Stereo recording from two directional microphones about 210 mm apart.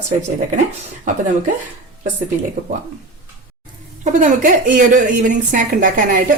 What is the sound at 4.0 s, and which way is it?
A woman's voice, 40° right (ahead or behind).